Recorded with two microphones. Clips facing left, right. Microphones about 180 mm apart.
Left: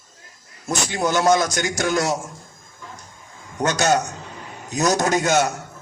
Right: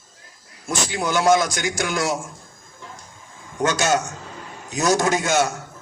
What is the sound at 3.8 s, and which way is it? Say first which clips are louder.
A man's voice: left 2 dB; 40° left (ahead or behind).